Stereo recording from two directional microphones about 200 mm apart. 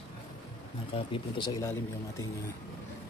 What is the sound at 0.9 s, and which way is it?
Speech, 25° left (ahead or behind).